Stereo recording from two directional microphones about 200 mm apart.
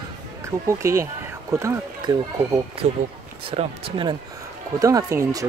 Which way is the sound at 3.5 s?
30° right (ahead or behind).